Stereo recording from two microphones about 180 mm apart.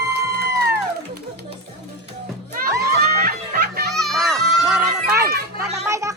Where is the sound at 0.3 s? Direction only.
65° right (ahead or behind).